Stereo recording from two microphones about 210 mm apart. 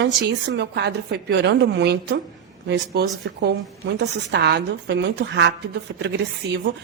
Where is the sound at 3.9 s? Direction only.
55° right (ahead or behind).